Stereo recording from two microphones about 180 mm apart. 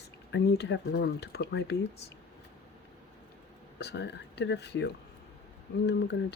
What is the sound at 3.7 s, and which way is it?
Speech, 70° left (ahead or behind).